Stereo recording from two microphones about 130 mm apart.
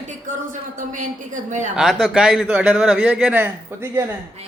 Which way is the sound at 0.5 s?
85° right.